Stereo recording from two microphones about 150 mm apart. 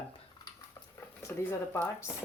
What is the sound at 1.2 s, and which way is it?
Speech, 15° left (ahead or behind).